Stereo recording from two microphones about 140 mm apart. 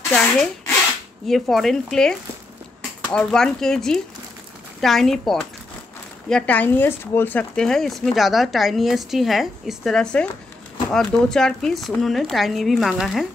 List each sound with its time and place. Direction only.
0.1 s speech: 5° left (ahead or behind)